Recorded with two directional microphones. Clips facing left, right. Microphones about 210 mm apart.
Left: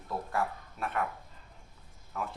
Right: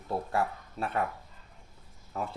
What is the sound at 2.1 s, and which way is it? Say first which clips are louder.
Speech: right 2 dB; 30° right (ahead or behind).